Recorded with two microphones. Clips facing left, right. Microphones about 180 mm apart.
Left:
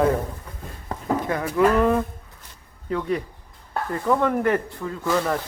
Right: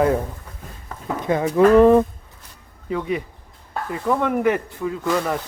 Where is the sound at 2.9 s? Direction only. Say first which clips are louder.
Right 1 dB; 10° right (ahead or behind).